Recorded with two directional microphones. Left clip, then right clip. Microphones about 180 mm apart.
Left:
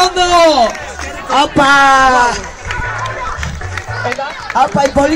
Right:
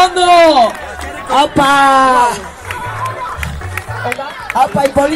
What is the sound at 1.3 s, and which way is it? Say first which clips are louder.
A man's voice: left 1 dB; 50° left (ahead or behind).